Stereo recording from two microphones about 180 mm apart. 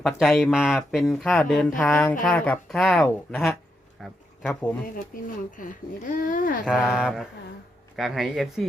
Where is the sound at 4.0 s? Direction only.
10° left (ahead or behind).